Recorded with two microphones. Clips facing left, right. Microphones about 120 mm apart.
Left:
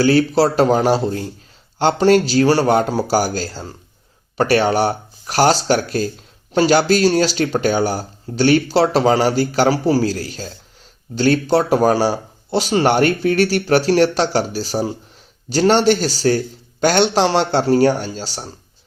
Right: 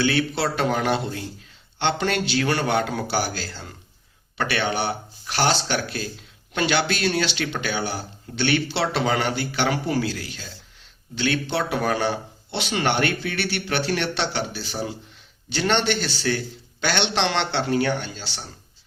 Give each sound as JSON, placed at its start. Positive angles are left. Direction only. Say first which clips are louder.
{"t": 0.0, "sound": "speech", "louder": "left 9 dB", "side_deg": 40}